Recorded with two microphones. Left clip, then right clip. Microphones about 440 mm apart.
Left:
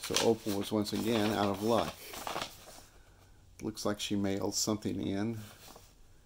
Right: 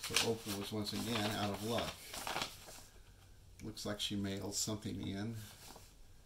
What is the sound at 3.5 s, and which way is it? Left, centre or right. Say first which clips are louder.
Speech: left 8 dB; centre.